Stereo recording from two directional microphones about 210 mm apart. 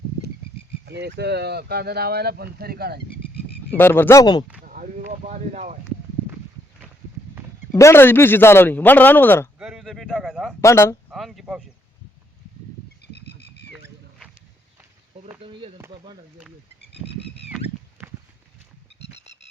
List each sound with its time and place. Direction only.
0.9 s speech: 55° right (ahead or behind)
3.7 s speech: 10° left (ahead or behind)
4.6 s speech: 40° right (ahead or behind)
7.7 s speech: 15° left (ahead or behind)
9.6 s speech: 5° right (ahead or behind)
10.6 s speech: 15° left (ahead or behind)
11.1 s speech: centre (ahead or behind)
15.4 s speech: 25° right (ahead or behind)
16.9 s a sound: 30° left (ahead or behind)
17.5 s a sound: 10° right (ahead or behind)